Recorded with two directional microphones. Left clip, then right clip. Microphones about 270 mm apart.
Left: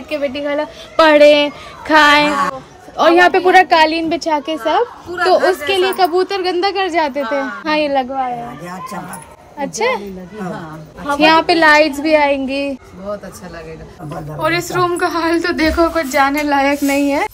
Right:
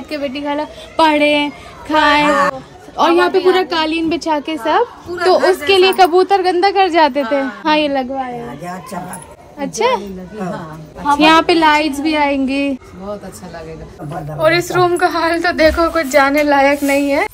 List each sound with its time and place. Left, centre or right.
0.3 s a woman's voice: centre
9.6 s a woman's voice: centre
12.1 s a woman's voice: right
14.4 s speech: centre